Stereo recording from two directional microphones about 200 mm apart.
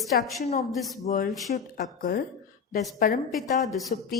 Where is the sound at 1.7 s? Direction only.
45° left (ahead or behind).